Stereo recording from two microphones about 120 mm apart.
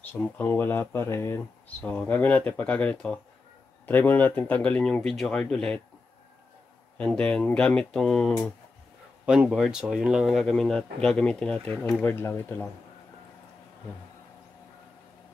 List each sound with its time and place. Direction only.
0.1 s speech: 20° left (ahead or behind)
7.0 s speech: 10° left (ahead or behind)
9.2 s speech: 5° right (ahead or behind); by 12.6 s 15° left (ahead or behind)